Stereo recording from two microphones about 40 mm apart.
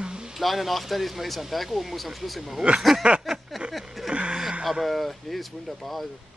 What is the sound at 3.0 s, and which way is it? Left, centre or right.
Speech, right.